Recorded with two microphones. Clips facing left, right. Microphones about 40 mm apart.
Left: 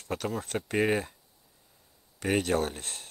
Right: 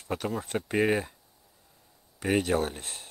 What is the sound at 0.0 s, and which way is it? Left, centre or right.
Speech, centre.